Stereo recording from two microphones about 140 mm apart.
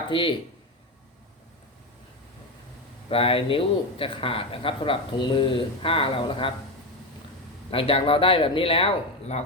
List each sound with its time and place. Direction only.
0.1 s speech: 35° left (ahead or behind)
3.1 s speech: 40° left (ahead or behind)
7.7 s speech: 40° left (ahead or behind)